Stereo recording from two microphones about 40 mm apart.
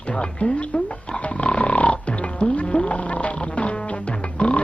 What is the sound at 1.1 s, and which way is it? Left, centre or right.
Music, left.